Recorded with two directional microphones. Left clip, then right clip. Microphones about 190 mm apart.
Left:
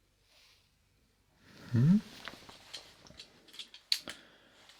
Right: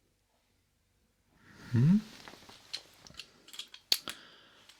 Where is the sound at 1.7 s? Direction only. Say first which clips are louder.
Even; 20° right (ahead or behind).